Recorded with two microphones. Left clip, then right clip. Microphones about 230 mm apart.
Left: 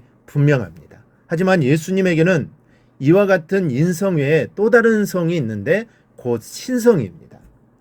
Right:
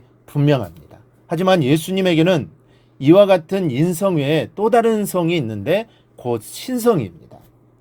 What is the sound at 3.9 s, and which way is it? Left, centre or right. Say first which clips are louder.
Speech: left 2 dB; right.